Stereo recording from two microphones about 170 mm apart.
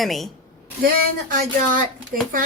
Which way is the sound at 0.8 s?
55° right (ahead or behind).